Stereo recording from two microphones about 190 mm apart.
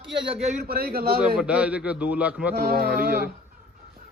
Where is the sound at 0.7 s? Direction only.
55° right (ahead or behind).